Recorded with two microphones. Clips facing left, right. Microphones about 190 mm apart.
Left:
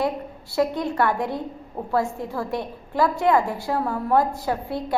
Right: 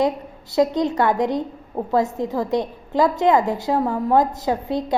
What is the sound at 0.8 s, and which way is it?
A woman's voice, 20° right (ahead or behind).